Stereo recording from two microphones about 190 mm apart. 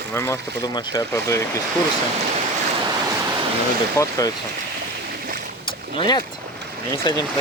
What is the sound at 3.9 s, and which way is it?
Speech, 15° left (ahead or behind).